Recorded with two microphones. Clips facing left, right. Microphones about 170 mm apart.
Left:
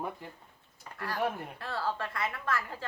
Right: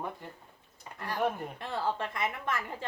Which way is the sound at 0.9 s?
20° right (ahead or behind).